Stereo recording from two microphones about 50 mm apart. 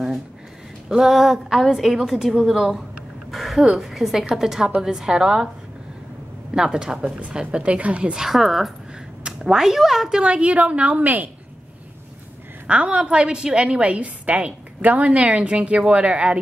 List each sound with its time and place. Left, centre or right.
0.8 s a woman's voice: centre
3.3 s a sound: centre
3.8 s a woman's voice: centre
6.5 s a woman's voice: centre
8.1 s speech: centre
10.2 s a woman's voice: right
12.6 s a woman's voice: right